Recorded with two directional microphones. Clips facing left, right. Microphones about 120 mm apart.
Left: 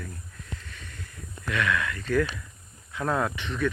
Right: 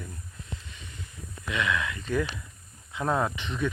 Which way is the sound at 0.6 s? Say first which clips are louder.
Left 1 dB; 55° left (ahead or behind).